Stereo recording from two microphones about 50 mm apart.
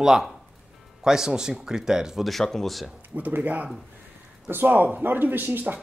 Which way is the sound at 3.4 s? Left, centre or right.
Right.